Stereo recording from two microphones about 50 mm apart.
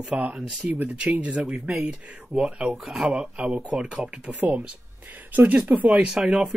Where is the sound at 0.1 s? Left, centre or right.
Right.